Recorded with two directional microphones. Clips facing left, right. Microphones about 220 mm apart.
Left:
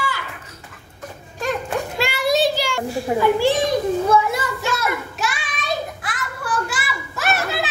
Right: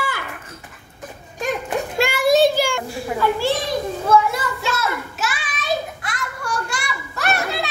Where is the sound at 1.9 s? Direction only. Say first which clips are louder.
Right 5 dB; 50° right (ahead or behind).